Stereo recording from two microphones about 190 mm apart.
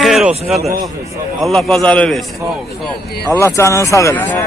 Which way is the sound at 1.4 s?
Centre (ahead or behind).